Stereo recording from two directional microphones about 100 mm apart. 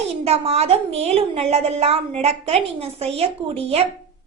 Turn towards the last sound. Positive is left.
turn(degrees=-85)